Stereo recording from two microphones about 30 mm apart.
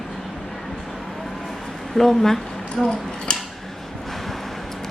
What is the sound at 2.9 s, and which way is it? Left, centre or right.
Speech, left.